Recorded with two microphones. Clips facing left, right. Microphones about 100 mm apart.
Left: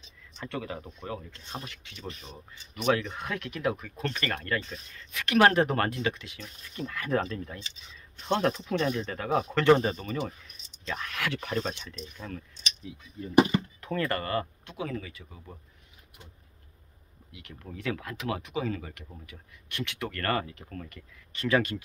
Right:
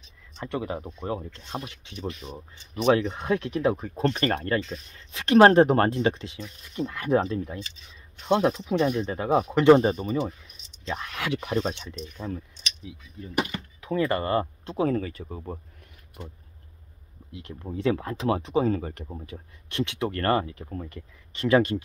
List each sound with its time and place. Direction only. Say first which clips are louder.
0.4 s speech: right 5 dB; 25° right (ahead or behind)
8.3 s speech: right 4 dB; 10° right (ahead or behind)
8.8 s speech: right 6 dB; 25° right (ahead or behind)
13.7 s a sound: right 5 dB; 5° right (ahead or behind)
14.0 s speech: right 6 dB; 20° right (ahead or behind); by 15.6 s 45° right (ahead or behind)
17.3 s speech: right 8 dB; 30° right (ahead or behind)